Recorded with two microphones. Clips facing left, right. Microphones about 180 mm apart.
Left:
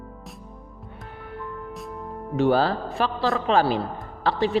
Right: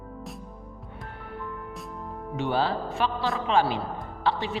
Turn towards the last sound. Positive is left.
turn(degrees=35)  # may be behind; listen again after turning